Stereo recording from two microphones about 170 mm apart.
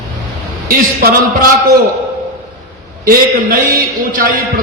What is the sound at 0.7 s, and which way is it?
Speech, 60° right (ahead or behind).